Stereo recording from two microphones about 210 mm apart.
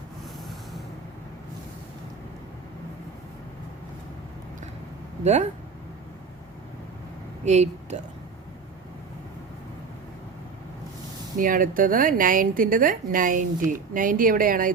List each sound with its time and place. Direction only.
5.2 s speech: 35° right (ahead or behind)
7.4 s a woman's voice: 35° right (ahead or behind)
11.3 s a woman's voice: 40° right (ahead or behind)